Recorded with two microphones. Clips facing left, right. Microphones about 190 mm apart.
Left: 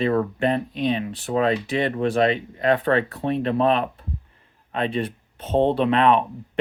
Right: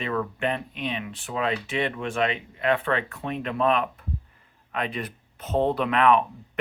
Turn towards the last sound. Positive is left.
turn(degrees=30)  # may be behind; listen again after turning